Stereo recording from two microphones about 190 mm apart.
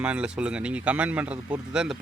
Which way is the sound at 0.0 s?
5° right (ahead or behind).